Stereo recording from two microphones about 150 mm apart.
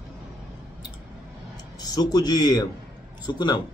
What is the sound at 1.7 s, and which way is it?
A man's voice, 25° left (ahead or behind).